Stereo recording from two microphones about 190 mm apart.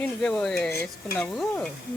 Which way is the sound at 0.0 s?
5° left (ahead or behind).